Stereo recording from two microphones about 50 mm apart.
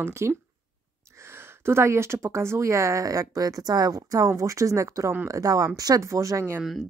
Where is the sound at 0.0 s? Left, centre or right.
Right.